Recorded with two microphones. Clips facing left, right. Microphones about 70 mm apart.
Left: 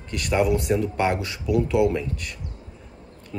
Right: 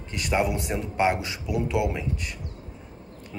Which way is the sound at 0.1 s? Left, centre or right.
Centre.